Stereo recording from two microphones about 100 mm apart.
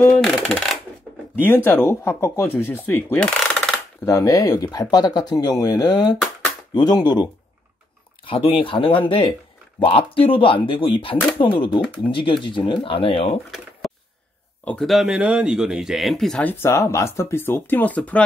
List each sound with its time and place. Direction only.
0.1 s speech: 10° left (ahead or behind)
1.4 s speech: 20° left (ahead or behind)
4.0 s speech: 30° left (ahead or behind)
8.3 s speech: 60° left (ahead or behind); by 13.4 s 80° left
13.8 s a sound: centre (ahead or behind)
14.8 s speech: centre (ahead or behind)
16.4 s speech: 25° left (ahead or behind)